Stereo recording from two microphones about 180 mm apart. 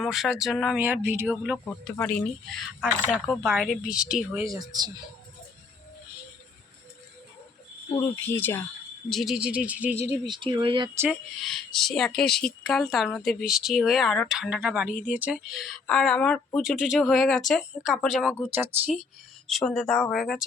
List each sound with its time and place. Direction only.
0.0 s speech: centre (ahead or behind)
1.4 s speech: centre (ahead or behind)
2.8 s speech: 5° right (ahead or behind)
4.4 s speech: 20° right (ahead or behind)
7.9 s speech: 15° left (ahead or behind)
9.0 s speech: centre (ahead or behind)
10.2 s speech: 25° right (ahead or behind)
11.1 s speech: centre (ahead or behind)
19.5 s speech: centre (ahead or behind)